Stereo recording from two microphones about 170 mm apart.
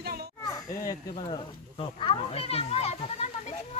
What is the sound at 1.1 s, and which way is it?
Speech, 30° left (ahead or behind).